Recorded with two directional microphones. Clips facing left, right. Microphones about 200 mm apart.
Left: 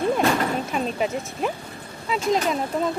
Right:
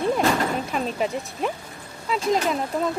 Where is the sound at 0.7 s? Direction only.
Centre (ahead or behind).